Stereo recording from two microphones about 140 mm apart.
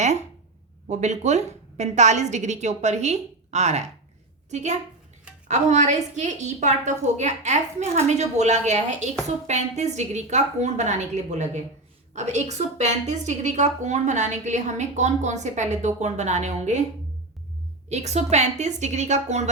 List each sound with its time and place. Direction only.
0.0 s a woman's voice: 55° right (ahead or behind)
17.8 s a woman's voice: 50° right (ahead or behind)